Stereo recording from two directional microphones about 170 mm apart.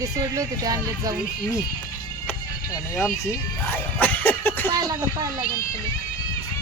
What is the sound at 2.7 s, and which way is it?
Music, 15° left (ahead or behind).